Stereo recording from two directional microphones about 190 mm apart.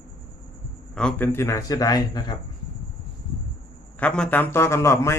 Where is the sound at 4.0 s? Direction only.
5° left (ahead or behind).